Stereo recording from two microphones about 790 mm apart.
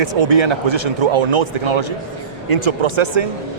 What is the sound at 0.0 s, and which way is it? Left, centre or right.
Speech, right.